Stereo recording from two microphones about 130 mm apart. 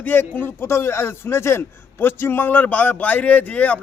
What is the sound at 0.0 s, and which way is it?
A man's voice, 15° left (ahead or behind).